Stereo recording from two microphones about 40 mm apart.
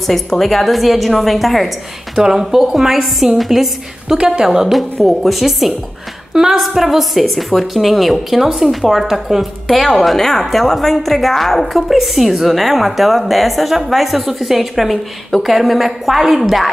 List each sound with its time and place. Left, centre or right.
0.0 s a woman's voice: centre
2.1 s a woman's voice: centre
4.2 s a woman's voice: right
4.5 s a woman's voice: centre